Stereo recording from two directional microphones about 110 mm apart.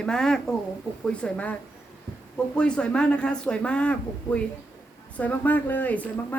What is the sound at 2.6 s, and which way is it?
Speech, 10° left (ahead or behind).